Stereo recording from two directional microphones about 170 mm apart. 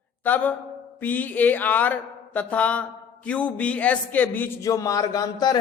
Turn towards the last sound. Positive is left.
turn(degrees=25)  # may be behind; listen again after turning